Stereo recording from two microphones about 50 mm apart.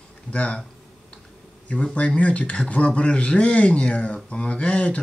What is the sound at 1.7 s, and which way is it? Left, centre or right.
Speech, left.